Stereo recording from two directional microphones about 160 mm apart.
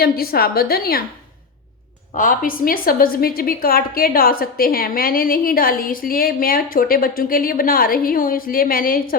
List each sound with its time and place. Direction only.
0.0 s a woman's voice: 70° left (ahead or behind)
2.1 s a woman's voice: 60° left (ahead or behind)